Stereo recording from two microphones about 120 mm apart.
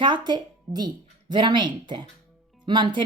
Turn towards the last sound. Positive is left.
turn(degrees=-40)  # may be behind; listen again after turning